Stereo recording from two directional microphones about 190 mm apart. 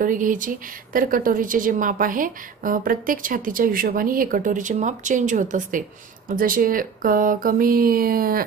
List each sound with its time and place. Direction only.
0.0 s a woman's voice: 45° right (ahead or behind)